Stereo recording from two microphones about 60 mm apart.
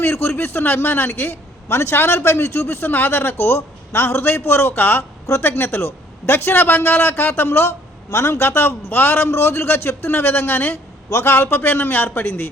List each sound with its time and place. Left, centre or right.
0.0 s speech: left